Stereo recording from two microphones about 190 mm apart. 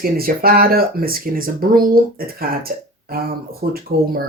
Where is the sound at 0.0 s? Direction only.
50° right (ahead or behind).